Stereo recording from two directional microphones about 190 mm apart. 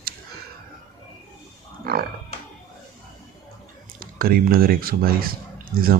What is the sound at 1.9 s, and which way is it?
Music, 50° right (ahead or behind).